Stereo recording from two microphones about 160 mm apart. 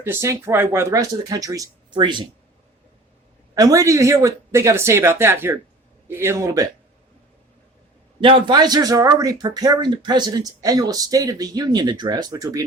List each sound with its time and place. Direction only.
0.0 s speech: 15° right (ahead or behind)
3.5 s speech: 20° right (ahead or behind)
8.2 s speech: 30° right (ahead or behind)